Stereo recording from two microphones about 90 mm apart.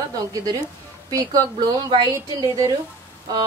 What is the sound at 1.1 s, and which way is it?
Speech, 45° right (ahead or behind).